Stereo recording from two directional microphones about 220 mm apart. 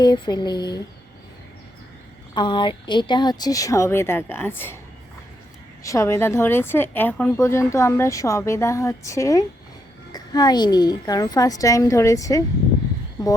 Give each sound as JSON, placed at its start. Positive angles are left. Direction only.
{"t": 0.0, "sound": "speech", "side_deg": 20}
{"t": 2.3, "sound": "a woman's voice", "side_deg": 20}
{"t": 5.8, "sound": "a woman's voice", "side_deg": 15}